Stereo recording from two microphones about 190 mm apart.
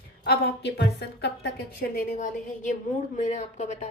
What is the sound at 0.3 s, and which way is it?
A woman's voice, 60° left (ahead or behind).